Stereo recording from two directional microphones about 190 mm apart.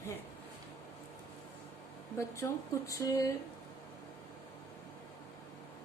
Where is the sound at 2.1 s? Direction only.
15° left (ahead or behind).